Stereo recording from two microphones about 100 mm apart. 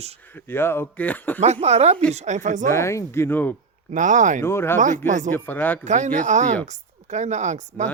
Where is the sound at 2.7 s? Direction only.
30° left (ahead or behind).